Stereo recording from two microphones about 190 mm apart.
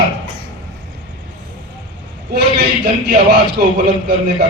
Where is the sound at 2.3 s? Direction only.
60° right (ahead or behind).